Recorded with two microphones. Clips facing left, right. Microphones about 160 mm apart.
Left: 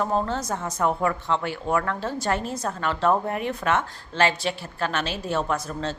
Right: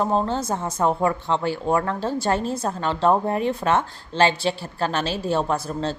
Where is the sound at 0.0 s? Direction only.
30° right (ahead or behind).